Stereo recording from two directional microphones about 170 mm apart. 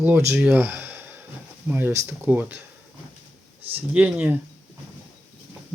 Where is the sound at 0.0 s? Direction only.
15° right (ahead or behind).